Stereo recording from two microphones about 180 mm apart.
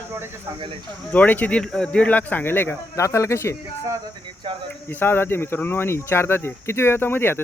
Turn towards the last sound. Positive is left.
turn(degrees=10)  # may be behind; listen again after turning